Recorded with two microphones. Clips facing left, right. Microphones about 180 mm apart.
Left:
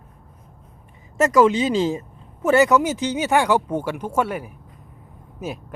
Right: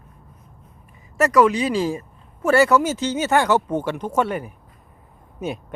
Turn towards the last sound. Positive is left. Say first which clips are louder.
# right 3 dB
turn(degrees=5)  # may be behind; listen again after turning